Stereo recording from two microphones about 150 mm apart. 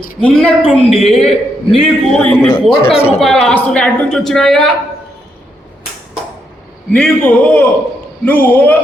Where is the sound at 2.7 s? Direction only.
40° left (ahead or behind).